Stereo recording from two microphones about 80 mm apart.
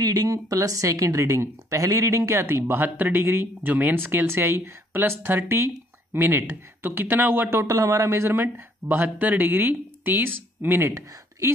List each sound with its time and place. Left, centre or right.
0.0 s speech: right
2.6 s speech: right